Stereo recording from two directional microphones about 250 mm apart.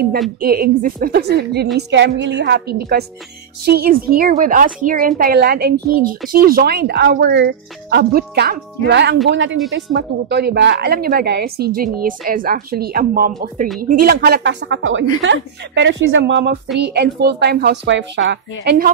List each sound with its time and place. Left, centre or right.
0.4 s a woman's voice: right